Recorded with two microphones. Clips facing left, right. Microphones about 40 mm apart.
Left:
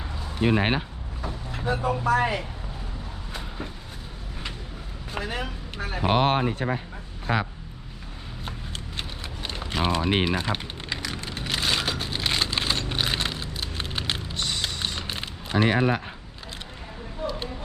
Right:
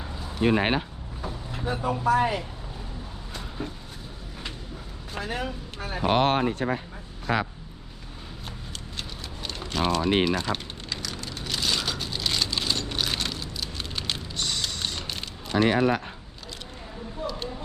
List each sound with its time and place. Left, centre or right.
0.3 s speech: centre
5.2 s speech: centre
6.0 s speech: centre
9.0 s typing: left
14.3 s a sound: centre
15.5 s speech: centre